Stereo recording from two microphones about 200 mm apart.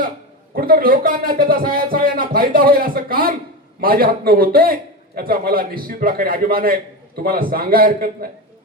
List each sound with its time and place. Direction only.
0.5 s a man's voice: 45° right (ahead or behind)